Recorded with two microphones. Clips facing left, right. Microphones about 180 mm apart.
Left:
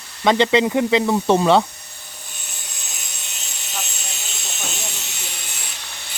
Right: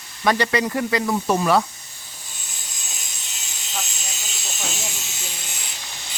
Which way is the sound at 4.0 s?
65° left (ahead or behind).